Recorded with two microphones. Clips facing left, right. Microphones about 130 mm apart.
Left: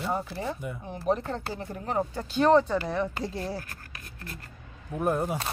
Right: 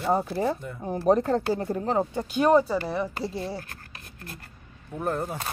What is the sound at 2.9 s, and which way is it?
Speech, centre (ahead or behind).